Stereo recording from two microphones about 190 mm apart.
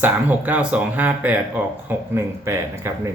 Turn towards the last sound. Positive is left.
turn(degrees=-15)  # may be behind; listen again after turning